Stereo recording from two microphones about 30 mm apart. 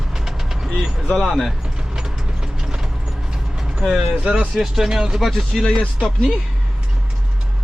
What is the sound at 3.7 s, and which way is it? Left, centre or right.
Speech, centre.